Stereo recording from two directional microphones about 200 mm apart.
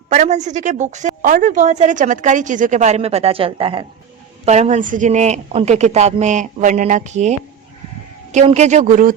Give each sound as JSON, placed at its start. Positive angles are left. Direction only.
{"t": 0.1, "sound": "a woman's voice", "side_deg": -35}